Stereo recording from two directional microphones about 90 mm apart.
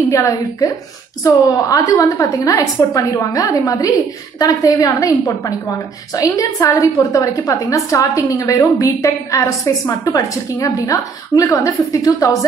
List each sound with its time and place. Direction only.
0.1 s a woman's voice: 35° left (ahead or behind)